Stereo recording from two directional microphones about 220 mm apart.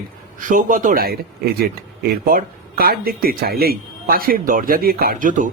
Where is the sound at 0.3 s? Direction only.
35° right (ahead or behind).